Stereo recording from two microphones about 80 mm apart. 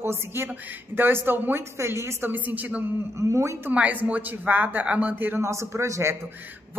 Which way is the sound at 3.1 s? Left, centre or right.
Right.